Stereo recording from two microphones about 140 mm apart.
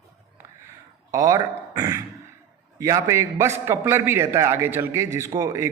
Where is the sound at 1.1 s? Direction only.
25° right (ahead or behind).